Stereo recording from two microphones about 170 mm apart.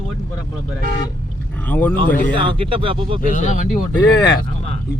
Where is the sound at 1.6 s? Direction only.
10° left (ahead or behind).